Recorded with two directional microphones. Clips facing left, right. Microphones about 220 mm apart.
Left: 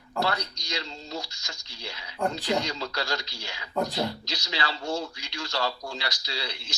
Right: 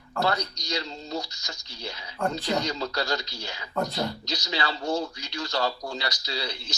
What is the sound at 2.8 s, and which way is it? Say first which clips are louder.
Speech: right 3 dB; 40° right (ahead or behind).